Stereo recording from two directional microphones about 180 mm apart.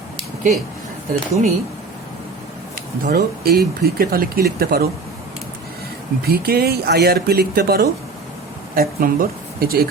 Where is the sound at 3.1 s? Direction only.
60° right (ahead or behind).